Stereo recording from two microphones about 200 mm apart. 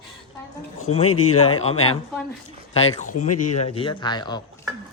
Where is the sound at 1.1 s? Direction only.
90° left.